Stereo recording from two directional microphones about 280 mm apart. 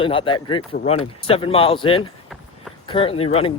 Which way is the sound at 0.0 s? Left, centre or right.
Centre.